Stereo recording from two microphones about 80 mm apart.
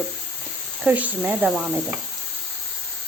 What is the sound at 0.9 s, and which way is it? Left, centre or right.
A woman's voice, right.